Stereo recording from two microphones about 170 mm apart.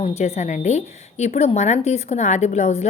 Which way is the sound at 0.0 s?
40° left (ahead or behind).